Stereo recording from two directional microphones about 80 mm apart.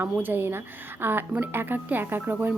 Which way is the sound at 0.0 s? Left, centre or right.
Right.